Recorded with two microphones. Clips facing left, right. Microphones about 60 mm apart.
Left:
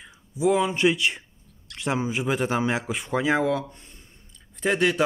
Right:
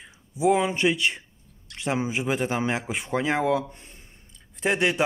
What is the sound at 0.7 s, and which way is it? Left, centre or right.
Speech, centre.